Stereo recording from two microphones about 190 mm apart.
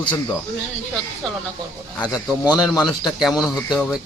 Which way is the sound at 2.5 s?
20° left (ahead or behind).